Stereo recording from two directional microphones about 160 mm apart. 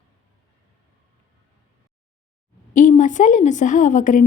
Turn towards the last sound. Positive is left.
turn(degrees=55)  # may be behind; listen again after turning